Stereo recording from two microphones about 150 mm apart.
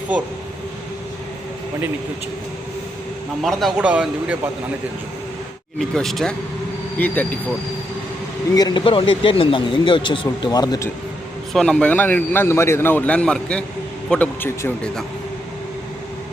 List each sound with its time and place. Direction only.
3.4 s speech: 5° right (ahead or behind)
5.9 s a man's voice: centre (ahead or behind)
8.5 s speech: 25° left (ahead or behind)
8.8 s speech: 40° left (ahead or behind)
11.5 s a man's voice: 5° left (ahead or behind)